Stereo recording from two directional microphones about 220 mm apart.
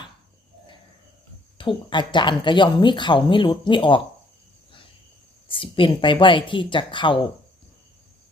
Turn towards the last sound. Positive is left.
turn(degrees=20)  # may be behind; listen again after turning